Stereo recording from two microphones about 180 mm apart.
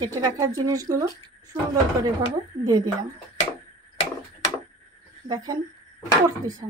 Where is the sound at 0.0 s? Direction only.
20° right (ahead or behind).